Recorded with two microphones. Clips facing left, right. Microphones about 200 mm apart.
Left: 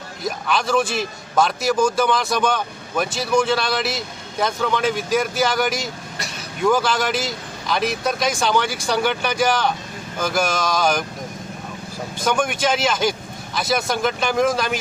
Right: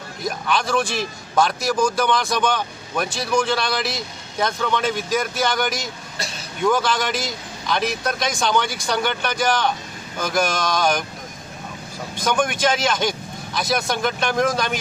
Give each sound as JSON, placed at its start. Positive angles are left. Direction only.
{"t": 0.3, "sound": "a man's voice", "side_deg": 0}
{"t": 6.1, "sound": "vehicle", "side_deg": -30}
{"t": 6.6, "sound": "a man's voice", "side_deg": 5}
{"t": 12.1, "sound": "a man's voice", "side_deg": 10}